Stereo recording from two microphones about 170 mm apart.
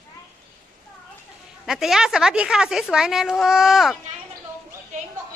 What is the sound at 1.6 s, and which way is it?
Speech, centre (ahead or behind).